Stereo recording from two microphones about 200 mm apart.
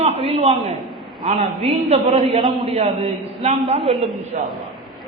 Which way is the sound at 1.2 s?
30° right (ahead or behind).